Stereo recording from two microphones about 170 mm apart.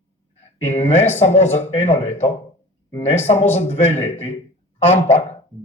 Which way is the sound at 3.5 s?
40° left (ahead or behind).